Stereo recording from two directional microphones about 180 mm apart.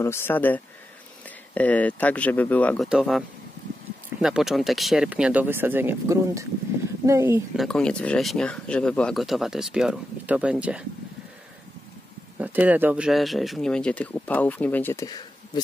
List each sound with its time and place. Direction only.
0.0 s speech: 15° left (ahead or behind); by 7.4 s 15° right (ahead or behind)
7.5 s speech: 5° left (ahead or behind)
12.4 s speech: 10° right (ahead or behind); by 15.6 s 20° left (ahead or behind)